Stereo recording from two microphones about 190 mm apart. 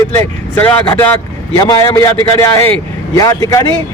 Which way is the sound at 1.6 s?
20° left (ahead or behind).